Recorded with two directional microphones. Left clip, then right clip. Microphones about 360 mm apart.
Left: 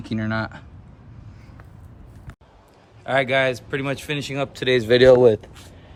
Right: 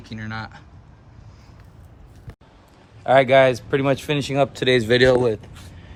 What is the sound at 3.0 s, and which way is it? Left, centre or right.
Speech, centre.